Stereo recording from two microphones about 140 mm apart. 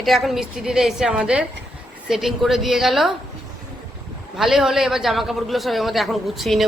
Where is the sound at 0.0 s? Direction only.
Centre (ahead or behind).